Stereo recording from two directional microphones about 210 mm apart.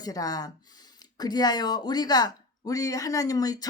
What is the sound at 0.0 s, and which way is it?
Speech, 15° left (ahead or behind).